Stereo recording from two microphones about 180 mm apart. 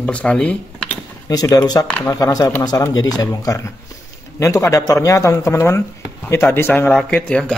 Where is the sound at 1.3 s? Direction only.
20° left (ahead or behind).